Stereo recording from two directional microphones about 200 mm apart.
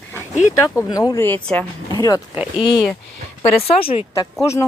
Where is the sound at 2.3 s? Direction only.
5° right (ahead or behind).